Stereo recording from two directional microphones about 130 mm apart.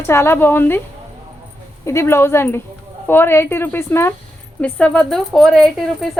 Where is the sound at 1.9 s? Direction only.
20° left (ahead or behind).